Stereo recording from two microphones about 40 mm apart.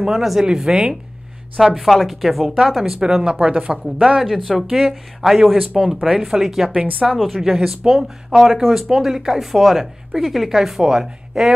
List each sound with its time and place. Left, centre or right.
0.0 s speech: centre
0.5 s speech: centre
1.6 s a woman's voice: centre; by 4.2 s right
4.4 s a woman's voice: centre
6.7 s speech: right
7.3 s speech: centre